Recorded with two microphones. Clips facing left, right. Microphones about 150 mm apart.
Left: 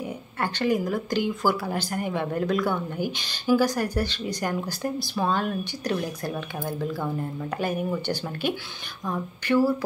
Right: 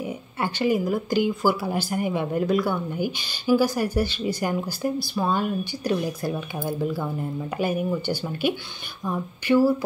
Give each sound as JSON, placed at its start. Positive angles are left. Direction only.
{"t": 0.0, "sound": "speech", "side_deg": -5}